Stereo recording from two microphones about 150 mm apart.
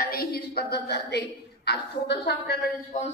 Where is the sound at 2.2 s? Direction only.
90° left.